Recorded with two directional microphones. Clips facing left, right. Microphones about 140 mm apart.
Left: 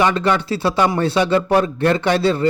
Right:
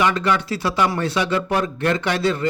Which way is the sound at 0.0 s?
30° left (ahead or behind).